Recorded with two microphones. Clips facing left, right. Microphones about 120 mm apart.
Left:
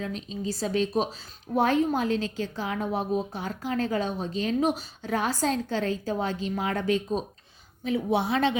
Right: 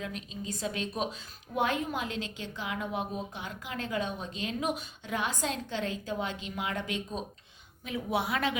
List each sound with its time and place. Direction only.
0.0 s a woman's voice: 30° left (ahead or behind)